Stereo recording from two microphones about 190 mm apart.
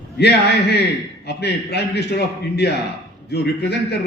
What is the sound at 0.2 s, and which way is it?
A man's voice, 60° left (ahead or behind).